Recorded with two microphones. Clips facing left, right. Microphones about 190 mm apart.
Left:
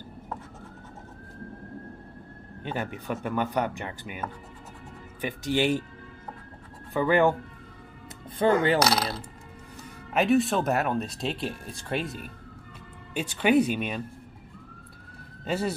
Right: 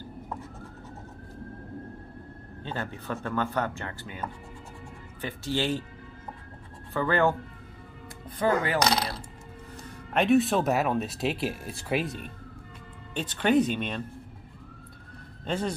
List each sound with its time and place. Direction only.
2.6 s speech: 15° left (ahead or behind)
6.9 s speech: 15° left (ahead or behind)
8.4 s speech: 25° left (ahead or behind)
10.1 s speech: centre (ahead or behind)
15.4 s speech: 5° left (ahead or behind)